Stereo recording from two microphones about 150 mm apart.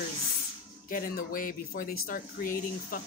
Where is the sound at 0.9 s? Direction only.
70° left (ahead or behind).